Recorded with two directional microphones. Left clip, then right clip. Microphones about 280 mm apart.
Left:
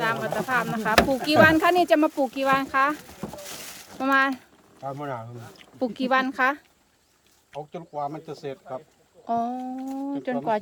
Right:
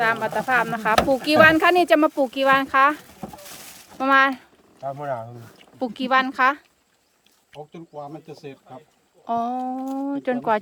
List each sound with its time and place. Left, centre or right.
0.0 s speech: centre
5.8 s speech: centre
7.5 s speech: centre
9.2 s speech: centre
9.8 s speech: right
10.1 s speech: centre